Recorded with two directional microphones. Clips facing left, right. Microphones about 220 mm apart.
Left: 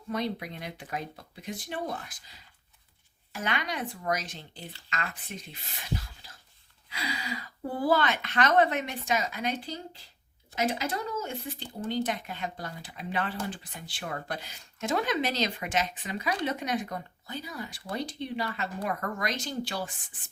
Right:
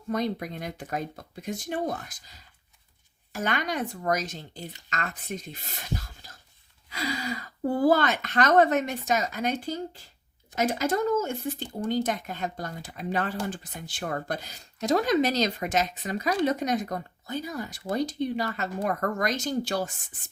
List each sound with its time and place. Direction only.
0.1 s speech: 45° right (ahead or behind)